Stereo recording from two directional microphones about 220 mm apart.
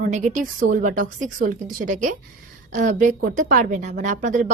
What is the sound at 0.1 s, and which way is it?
A woman's voice, 35° right (ahead or behind).